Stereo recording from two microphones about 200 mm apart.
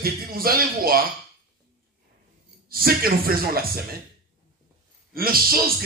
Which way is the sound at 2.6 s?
45° right (ahead or behind).